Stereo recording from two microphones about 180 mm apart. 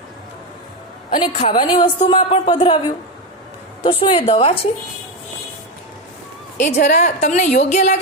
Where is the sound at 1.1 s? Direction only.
25° left (ahead or behind).